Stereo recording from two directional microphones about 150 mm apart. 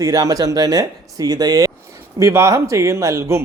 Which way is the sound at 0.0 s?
25° right (ahead or behind).